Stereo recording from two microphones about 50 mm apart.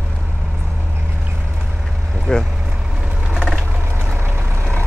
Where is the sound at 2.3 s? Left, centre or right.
Centre.